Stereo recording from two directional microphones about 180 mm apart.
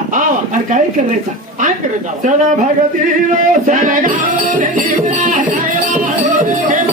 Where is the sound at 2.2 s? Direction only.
45° right (ahead or behind).